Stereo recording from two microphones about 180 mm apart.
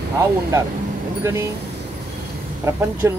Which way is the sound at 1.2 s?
15° right (ahead or behind).